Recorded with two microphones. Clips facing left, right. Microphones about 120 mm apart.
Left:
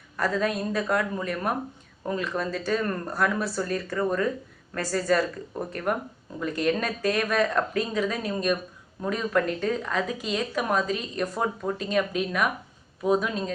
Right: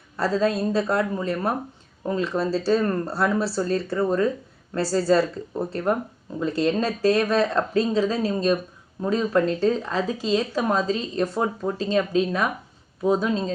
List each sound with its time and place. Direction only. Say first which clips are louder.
0.2 s speech: right 4 dB; 30° right (ahead or behind)